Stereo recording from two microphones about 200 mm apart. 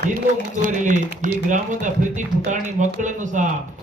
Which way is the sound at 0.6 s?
40° right (ahead or behind).